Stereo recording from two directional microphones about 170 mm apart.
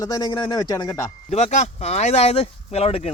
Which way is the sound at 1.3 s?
45° left (ahead or behind).